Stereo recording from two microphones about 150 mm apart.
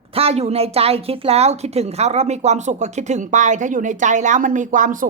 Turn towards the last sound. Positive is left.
turn(degrees=-60)  # may be behind; listen again after turning